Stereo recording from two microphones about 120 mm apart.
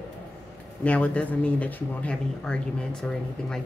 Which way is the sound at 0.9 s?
10° left (ahead or behind).